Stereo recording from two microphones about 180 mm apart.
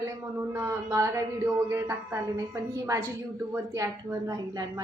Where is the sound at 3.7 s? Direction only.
15° right (ahead or behind).